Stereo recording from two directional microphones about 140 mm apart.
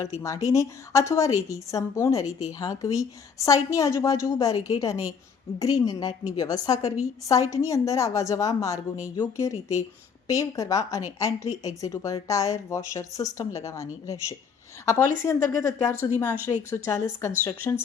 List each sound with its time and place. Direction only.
0.4 s a woman's voice: 20° left (ahead or behind)